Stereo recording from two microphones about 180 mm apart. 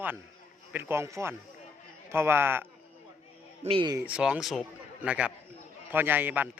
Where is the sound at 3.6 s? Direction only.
30° right (ahead or behind).